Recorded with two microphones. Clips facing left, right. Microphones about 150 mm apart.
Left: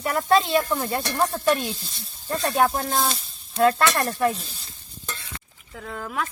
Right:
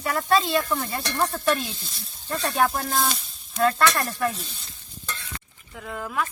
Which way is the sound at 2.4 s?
30° left (ahead or behind).